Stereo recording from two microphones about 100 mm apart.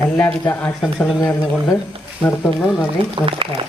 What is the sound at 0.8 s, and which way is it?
Speech, centre (ahead or behind).